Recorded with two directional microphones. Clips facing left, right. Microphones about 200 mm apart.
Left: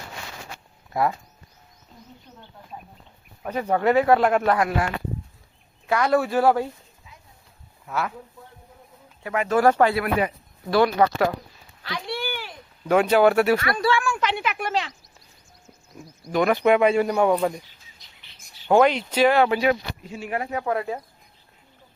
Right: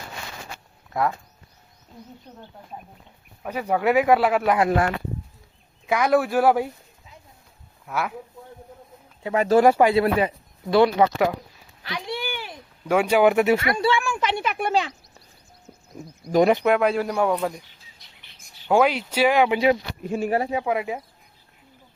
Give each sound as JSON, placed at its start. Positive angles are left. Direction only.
{"t": 0.9, "sound": "speech", "side_deg": 0}
{"t": 3.4, "sound": "speech", "side_deg": -10}
{"t": 5.8, "sound": "speech", "side_deg": -10}
{"t": 7.9, "sound": "speech", "side_deg": -10}
{"t": 9.2, "sound": "speech", "side_deg": -30}
{"t": 9.6, "sound": "speech", "side_deg": -10}
{"t": 9.9, "sound": "speech", "side_deg": -25}
{"t": 11.8, "sound": "a sound", "side_deg": -15}
{"t": 12.9, "sound": "speech", "side_deg": -10}
{"t": 16.6, "sound": "speech", "side_deg": 0}
{"t": 18.7, "sound": "speech", "side_deg": -5}
{"t": 20.0, "sound": "speech", "side_deg": -50}
{"t": 20.5, "sound": "speech", "side_deg": -10}